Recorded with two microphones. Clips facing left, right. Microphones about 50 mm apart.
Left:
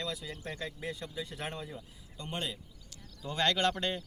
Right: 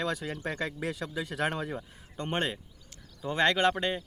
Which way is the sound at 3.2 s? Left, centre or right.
Right.